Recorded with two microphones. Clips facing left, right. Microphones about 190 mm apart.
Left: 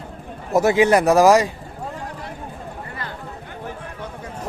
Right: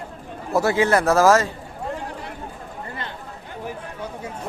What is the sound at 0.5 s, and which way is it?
Speech, 20° left (ahead or behind).